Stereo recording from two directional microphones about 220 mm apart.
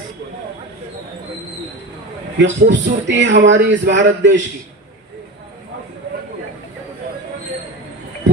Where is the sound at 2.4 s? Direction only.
55° right (ahead or behind).